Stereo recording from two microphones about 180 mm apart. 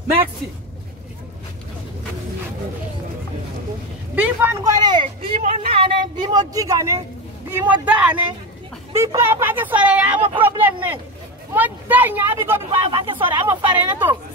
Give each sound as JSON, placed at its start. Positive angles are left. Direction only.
{"t": 4.1, "sound": "speech", "side_deg": -10}
{"t": 5.0, "sound": "speech", "side_deg": -40}
{"t": 5.7, "sound": "speech", "side_deg": -30}
{"t": 12.9, "sound": "speech", "side_deg": -30}
{"t": 13.3, "sound": "speech", "side_deg": -10}